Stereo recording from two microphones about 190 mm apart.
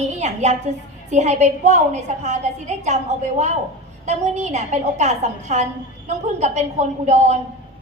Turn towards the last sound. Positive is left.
turn(degrees=-35)  # may be behind; listen again after turning